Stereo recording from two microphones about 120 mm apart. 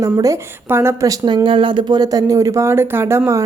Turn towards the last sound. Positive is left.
turn(degrees=-25)  # may be behind; listen again after turning